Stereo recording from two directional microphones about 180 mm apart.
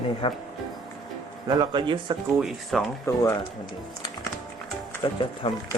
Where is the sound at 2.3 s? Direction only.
Centre (ahead or behind).